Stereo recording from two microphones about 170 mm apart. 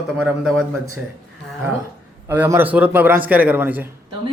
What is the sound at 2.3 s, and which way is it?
A man's voice, 10° right (ahead or behind).